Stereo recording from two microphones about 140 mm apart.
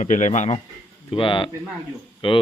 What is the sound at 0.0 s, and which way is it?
Speech, 60° left (ahead or behind).